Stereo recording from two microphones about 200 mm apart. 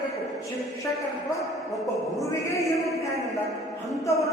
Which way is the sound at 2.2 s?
15° left (ahead or behind).